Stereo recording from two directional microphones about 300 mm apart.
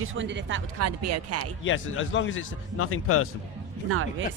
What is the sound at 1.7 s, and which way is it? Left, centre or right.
Speech, left.